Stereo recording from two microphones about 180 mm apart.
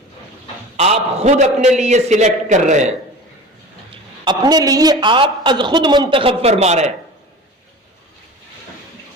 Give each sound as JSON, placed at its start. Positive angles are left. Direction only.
{"t": 0.8, "sound": "a man's voice", "side_deg": -35}
{"t": 4.3, "sound": "a woman's voice", "side_deg": -20}